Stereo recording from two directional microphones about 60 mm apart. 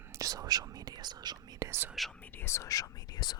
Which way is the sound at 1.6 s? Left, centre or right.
Right.